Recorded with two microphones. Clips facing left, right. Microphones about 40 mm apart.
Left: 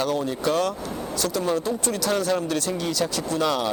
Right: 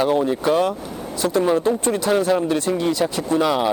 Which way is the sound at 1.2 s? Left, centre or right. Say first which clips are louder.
Right 7 dB; right.